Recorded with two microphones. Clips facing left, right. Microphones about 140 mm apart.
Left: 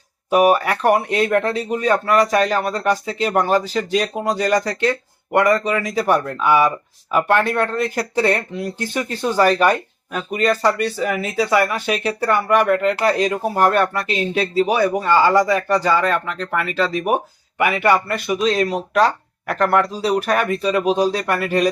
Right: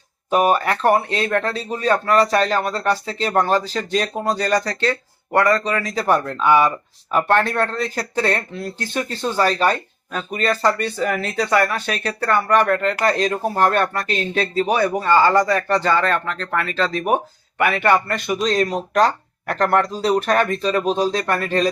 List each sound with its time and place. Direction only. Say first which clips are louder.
0.3 s speech: left 2 dB; 10° left (ahead or behind)